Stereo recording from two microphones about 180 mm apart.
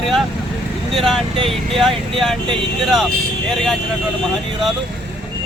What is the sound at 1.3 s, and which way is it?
Speech, 30° right (ahead or behind).